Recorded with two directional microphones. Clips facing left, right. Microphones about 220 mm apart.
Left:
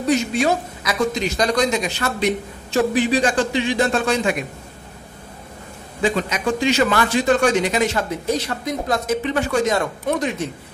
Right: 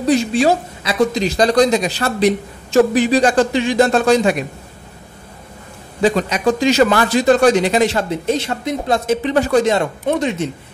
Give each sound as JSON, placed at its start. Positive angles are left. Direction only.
{"t": 0.0, "sound": "a woman's voice", "side_deg": -35}
{"t": 6.0, "sound": "a woman's voice", "side_deg": -40}